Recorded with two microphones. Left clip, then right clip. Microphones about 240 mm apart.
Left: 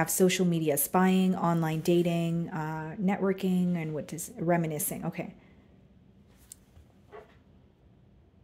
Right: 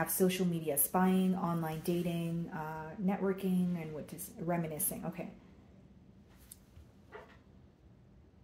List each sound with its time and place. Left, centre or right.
0.0 s speech: left